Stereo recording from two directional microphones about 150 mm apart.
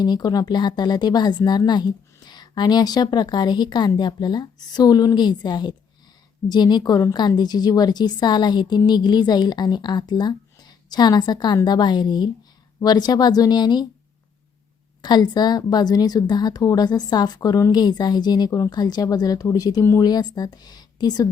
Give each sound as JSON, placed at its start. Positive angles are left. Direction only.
{"t": 0.0, "sound": "a woman's voice", "side_deg": 25}
{"t": 15.0, "sound": "a woman's voice", "side_deg": 30}